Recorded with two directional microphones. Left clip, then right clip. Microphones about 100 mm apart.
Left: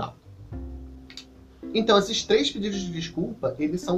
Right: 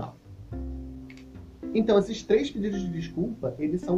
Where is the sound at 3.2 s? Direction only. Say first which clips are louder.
Even; 30° left (ahead or behind).